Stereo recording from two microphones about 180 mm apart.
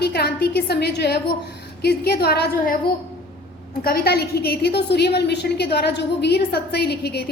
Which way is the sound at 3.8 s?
60° left (ahead or behind).